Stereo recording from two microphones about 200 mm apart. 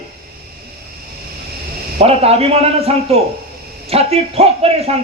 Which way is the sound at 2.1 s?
30° right (ahead or behind).